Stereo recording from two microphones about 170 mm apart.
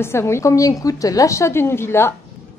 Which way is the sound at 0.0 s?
15° left (ahead or behind).